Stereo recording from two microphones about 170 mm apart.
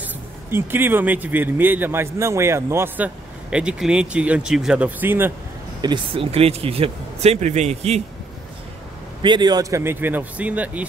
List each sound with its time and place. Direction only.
0.0 s speech: 15° right (ahead or behind)
5.8 s speech: 25° right (ahead or behind)
9.2 s speech: 25° right (ahead or behind); by 10.9 s 10° right (ahead or behind)